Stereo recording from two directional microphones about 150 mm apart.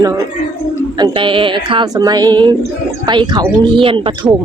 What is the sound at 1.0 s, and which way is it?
Speech, 35° right (ahead or behind).